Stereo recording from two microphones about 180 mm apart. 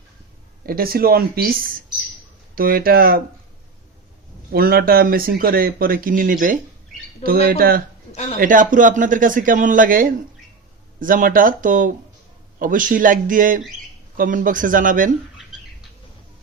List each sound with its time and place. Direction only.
0.6 s speech: 55° right (ahead or behind)
4.5 s speech: 55° right (ahead or behind)
8.1 s speech: 35° left (ahead or behind)
8.4 s speech: 50° right (ahead or behind)